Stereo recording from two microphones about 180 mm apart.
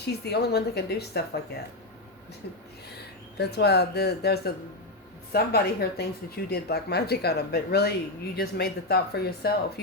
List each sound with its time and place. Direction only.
0.0 s speech: 65° left (ahead or behind)
3.3 s speech: 65° left (ahead or behind)